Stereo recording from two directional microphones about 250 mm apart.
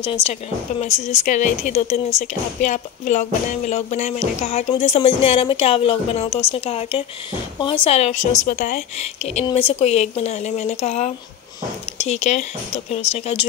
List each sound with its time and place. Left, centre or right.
0.0 s speech: left